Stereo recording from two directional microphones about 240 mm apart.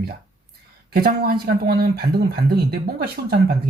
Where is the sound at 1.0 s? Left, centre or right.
Right.